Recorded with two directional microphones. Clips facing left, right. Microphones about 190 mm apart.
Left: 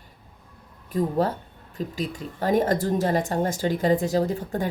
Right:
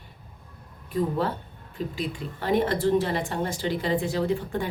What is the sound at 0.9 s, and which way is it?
Speech, 40° left (ahead or behind).